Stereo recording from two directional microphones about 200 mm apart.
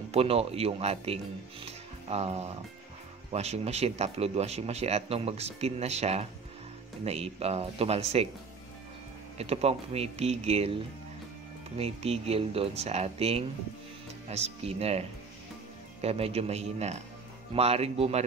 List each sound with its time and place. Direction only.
0.1 s speech: 30° right (ahead or behind)
9.4 s speech: 30° right (ahead or behind)
11.8 s speech: 30° right (ahead or behind)